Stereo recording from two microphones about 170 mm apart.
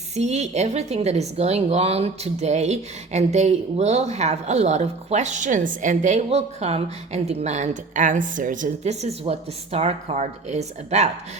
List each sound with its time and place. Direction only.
0.2 s a woman's voice: 40° right (ahead or behind)